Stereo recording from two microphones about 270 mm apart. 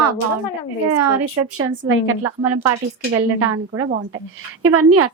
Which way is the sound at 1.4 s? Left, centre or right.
Right.